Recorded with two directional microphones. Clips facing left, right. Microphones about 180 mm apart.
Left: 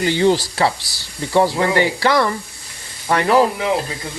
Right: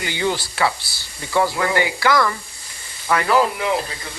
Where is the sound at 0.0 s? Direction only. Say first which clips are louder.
Left 7 dB; 30° left (ahead or behind).